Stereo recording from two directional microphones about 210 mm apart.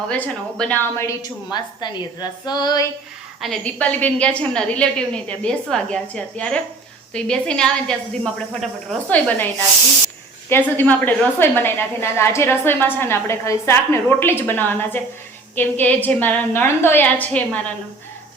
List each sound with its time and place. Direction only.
0.1 s a woman's voice: 5° left (ahead or behind)
3.4 s a woman's voice: 5° left (ahead or behind)
10.5 s a woman's voice: 10° left (ahead or behind)